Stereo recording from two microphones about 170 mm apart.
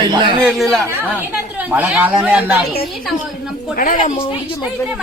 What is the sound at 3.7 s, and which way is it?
Speech, 55° left (ahead or behind).